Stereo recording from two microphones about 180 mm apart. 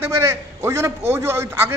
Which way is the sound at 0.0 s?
15° right (ahead or behind).